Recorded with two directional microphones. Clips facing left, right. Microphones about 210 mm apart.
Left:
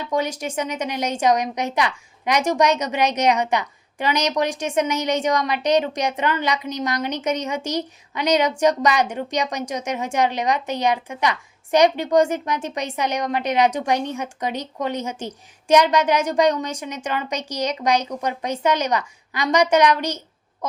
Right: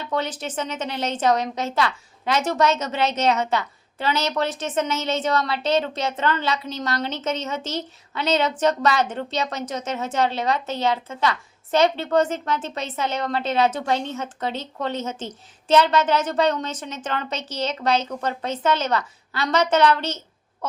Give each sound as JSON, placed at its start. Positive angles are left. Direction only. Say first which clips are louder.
{"t": 0.0, "sound": "a woman's voice", "louder": "left 3 dB", "side_deg": 10}